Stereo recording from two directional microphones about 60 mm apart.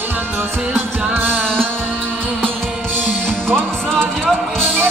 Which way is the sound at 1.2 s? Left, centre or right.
Centre.